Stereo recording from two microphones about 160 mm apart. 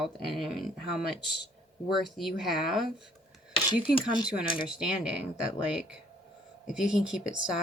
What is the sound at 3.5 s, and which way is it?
Speech, 30° left (ahead or behind).